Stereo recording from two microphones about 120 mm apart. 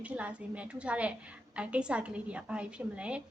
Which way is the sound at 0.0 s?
10° right (ahead or behind).